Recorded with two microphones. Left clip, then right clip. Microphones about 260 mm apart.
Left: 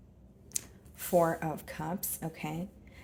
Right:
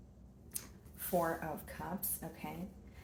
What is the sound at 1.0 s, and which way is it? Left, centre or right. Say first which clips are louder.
A woman's voice: left 8 dB; left.